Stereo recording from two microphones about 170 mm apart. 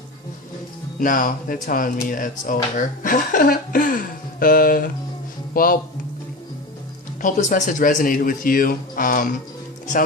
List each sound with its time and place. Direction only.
0.9 s speech: 50° left (ahead or behind)
7.2 s speech: 50° left (ahead or behind)